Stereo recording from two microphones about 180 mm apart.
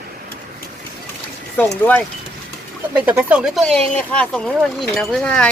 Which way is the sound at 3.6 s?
5° left (ahead or behind).